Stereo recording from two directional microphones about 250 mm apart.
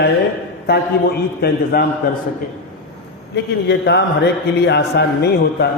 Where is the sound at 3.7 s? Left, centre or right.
Left.